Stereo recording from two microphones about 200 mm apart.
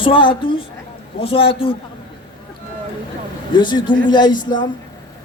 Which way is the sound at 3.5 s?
25° left (ahead or behind).